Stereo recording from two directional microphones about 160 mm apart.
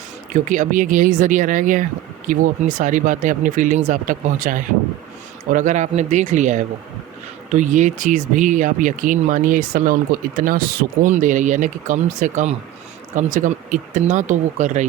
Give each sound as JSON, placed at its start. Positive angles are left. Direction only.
{"t": 0.4, "sound": "speech", "side_deg": -55}